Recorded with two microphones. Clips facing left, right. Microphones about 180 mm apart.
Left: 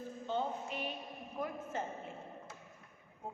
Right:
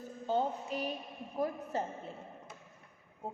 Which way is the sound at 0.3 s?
40° right (ahead or behind).